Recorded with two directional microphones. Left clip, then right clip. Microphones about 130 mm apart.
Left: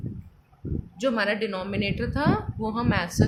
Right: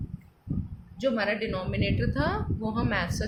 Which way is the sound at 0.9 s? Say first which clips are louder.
Left 2 dB; 40° left (ahead or behind).